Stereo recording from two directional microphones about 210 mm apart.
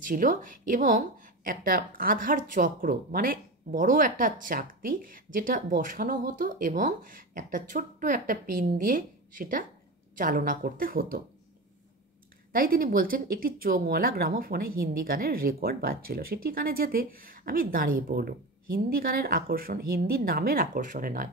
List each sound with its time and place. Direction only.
0.0 s a woman's voice: 40° right (ahead or behind)
12.5 s speech: 45° right (ahead or behind)